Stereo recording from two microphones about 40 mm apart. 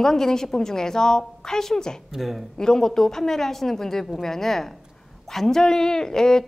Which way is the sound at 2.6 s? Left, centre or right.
Centre.